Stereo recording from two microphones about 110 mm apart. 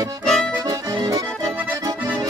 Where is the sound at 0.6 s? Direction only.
35° right (ahead or behind).